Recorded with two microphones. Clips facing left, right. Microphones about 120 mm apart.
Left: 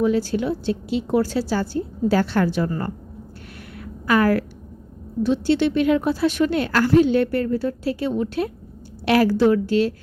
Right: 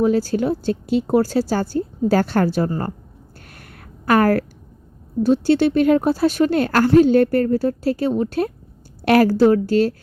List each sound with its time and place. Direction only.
0.0 s a woman's voice: 40° right (ahead or behind)
3.8 s a sound: 50° right (ahead or behind)
5.2 s a woman's voice: 40° right (ahead or behind)